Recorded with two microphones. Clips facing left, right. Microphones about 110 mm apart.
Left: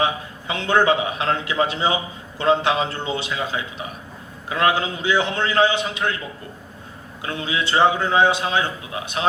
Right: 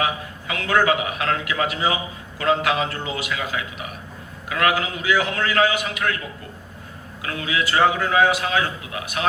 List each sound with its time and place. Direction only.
0.0 s a man's voice: 25° left (ahead or behind)
7.2 s a man's voice: 25° left (ahead or behind)